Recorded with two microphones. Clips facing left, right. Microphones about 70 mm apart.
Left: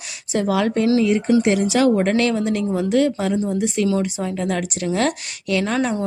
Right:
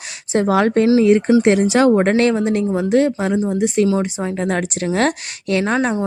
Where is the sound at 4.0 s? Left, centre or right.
Right.